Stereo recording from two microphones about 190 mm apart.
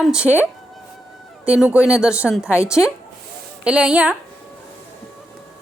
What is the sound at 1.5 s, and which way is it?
Speech, 5° right (ahead or behind).